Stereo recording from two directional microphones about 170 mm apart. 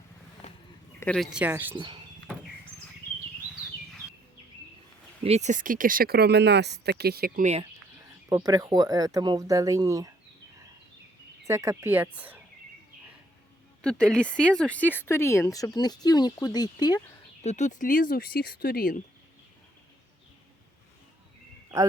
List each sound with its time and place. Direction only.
0.4 s a sound: 40° left (ahead or behind)
0.9 s speech: 5° left (ahead or behind); by 1.7 s 10° right (ahead or behind)
1.7 s speech: 25° right (ahead or behind)
5.2 s speech: 40° right (ahead or behind); by 6.9 s 80° right
7.0 s speech: 65° right (ahead or behind)
8.3 s speech: 20° right (ahead or behind)
11.4 s speech: 15° right (ahead or behind)
13.8 s speech: 5° left (ahead or behind); by 17.0 s 25° left (ahead or behind)
17.4 s speech: 45° left (ahead or behind)